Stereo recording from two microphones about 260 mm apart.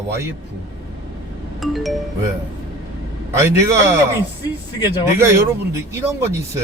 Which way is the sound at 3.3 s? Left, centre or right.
Centre.